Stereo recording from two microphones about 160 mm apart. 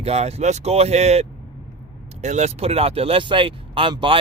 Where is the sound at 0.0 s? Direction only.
40° right (ahead or behind).